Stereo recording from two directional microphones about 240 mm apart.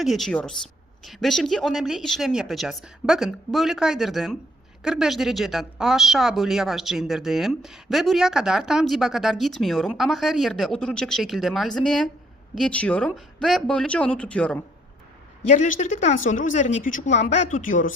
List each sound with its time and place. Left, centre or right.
0.0 s speech: centre
15.4 s speech: left